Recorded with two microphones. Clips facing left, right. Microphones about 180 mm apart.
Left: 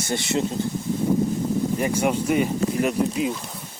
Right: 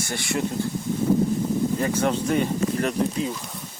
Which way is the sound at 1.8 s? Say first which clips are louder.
Left 1 dB; 10° left (ahead or behind).